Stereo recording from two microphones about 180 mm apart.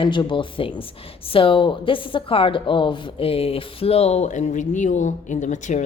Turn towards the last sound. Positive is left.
turn(degrees=40)  # may be behind; listen again after turning